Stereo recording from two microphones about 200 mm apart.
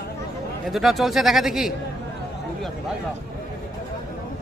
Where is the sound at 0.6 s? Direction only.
Centre (ahead or behind).